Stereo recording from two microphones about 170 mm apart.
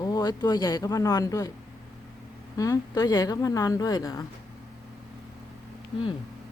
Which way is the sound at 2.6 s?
20° left (ahead or behind).